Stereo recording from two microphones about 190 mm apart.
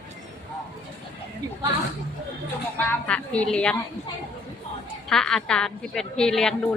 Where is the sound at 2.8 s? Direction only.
5° left (ahead or behind).